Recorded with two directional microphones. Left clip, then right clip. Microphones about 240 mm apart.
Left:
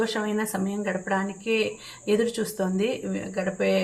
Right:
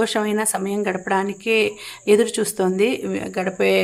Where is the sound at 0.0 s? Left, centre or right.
Right.